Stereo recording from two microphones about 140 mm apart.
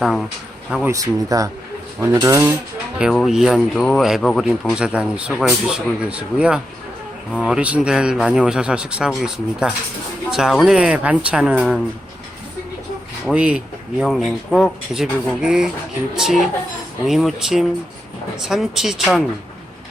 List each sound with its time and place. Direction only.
0.0 s a man's voice: 5° left (ahead or behind)
0.9 s speech: 25° right (ahead or behind)
3.0 s a man's voice: centre (ahead or behind)
13.2 s a man's voice: 10° right (ahead or behind)